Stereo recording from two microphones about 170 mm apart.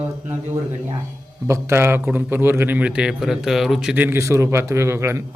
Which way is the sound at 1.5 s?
15° right (ahead or behind).